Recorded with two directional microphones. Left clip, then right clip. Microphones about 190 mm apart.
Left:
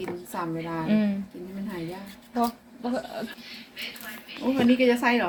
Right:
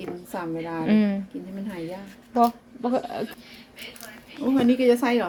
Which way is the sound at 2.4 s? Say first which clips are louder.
Right 7 dB; 45° right (ahead or behind).